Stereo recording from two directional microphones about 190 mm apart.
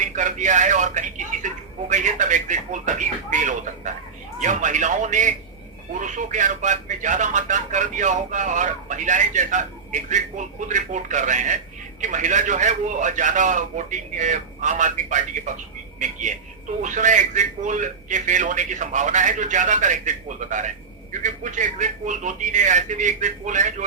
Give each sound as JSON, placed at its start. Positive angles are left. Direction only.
{"t": 0.0, "sound": "a sound", "side_deg": -40}
{"t": 1.9, "sound": "speech", "side_deg": -40}
{"t": 16.8, "sound": "speech", "side_deg": -40}